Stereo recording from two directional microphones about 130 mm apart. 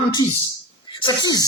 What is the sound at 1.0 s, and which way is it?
Music, 35° left (ahead or behind).